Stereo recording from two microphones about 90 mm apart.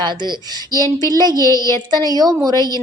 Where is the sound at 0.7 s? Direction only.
35° left (ahead or behind).